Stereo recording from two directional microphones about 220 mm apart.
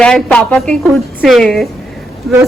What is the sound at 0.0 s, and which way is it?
A woman's voice, 5° left (ahead or behind).